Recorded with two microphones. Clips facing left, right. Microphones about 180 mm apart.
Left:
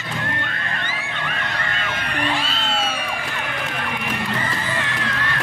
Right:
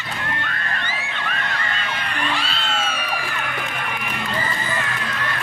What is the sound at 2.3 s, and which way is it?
Music, 45° left (ahead or behind).